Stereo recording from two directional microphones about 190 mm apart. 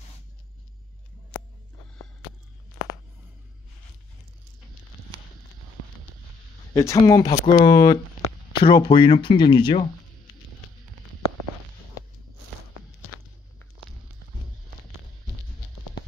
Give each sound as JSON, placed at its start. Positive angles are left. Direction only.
{"t": 6.7, "sound": "speech", "side_deg": 15}